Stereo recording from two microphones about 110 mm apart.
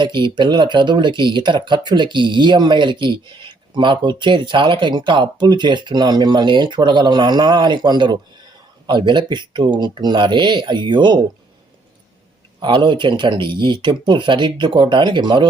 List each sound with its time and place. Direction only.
0.0 s speech: 45° right (ahead or behind)
12.5 s speech: 45° right (ahead or behind)